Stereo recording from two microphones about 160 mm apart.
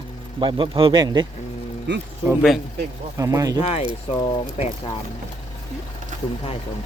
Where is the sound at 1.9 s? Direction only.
90° right.